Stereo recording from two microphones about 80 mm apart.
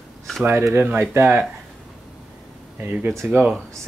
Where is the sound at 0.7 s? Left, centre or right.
Right.